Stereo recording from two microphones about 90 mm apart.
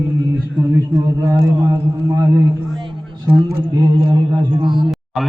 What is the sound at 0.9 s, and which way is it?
Speech, 35° right (ahead or behind).